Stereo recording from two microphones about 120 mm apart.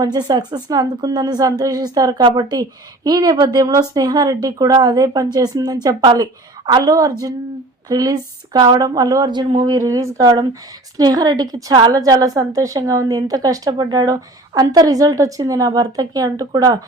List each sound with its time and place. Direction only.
0.0 s speech: 35° right (ahead or behind)